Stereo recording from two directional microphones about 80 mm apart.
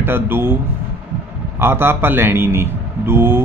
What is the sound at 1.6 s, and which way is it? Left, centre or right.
Speech, right.